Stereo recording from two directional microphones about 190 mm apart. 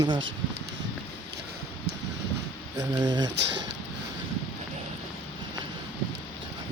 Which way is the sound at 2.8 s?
20° right (ahead or behind).